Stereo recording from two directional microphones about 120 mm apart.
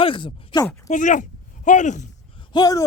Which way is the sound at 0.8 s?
90° left.